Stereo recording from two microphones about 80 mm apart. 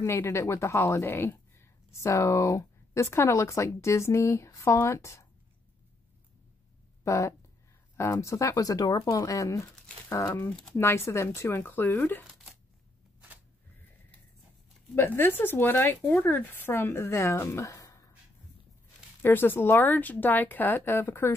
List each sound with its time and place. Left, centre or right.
0.0 s a woman's voice: left
7.1 s a woman's voice: left
10.5 s speech: centre
10.8 s a woman's voice: left
15.0 s a woman's voice: left
19.2 s speech: left